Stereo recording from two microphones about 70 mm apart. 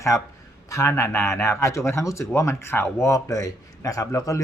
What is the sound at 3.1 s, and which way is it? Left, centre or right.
A man's voice, left.